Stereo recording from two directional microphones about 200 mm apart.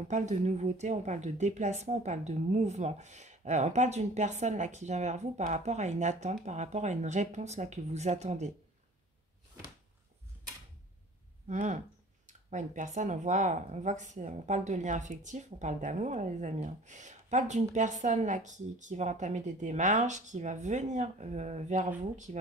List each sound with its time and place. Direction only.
0.1 s speech: 35° right (ahead or behind)
11.4 s speech: 40° right (ahead or behind)